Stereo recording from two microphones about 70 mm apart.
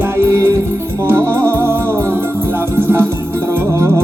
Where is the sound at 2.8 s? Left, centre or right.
Right.